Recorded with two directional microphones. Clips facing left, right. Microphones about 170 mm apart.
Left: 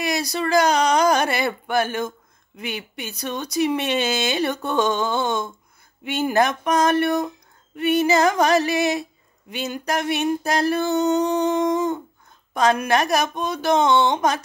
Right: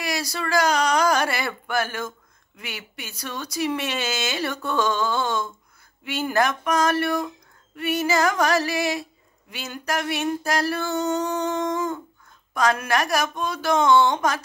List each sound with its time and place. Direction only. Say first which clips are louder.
0.0 s speech: left 4 dB; 20° left (ahead or behind)